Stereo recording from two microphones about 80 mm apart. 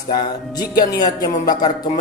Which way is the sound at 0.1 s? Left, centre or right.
Left.